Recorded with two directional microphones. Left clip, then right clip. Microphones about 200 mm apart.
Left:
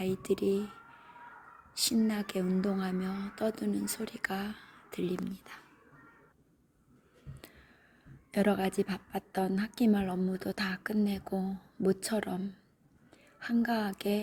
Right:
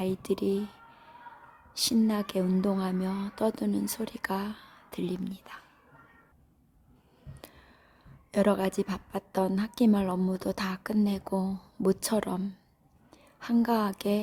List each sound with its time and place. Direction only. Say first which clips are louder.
0.0 s a sound: right 1 dB; 15° right (ahead or behind)
1.8 s a woman's voice: right 3 dB; 15° right (ahead or behind)
8.3 s a woman's voice: right 4 dB; 15° right (ahead or behind)